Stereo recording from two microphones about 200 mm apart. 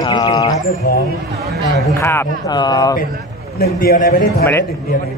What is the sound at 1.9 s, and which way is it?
Speech, 10° left (ahead or behind).